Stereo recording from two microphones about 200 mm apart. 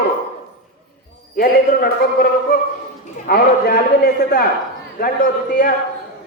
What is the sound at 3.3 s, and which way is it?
A man's voice, 50° left (ahead or behind).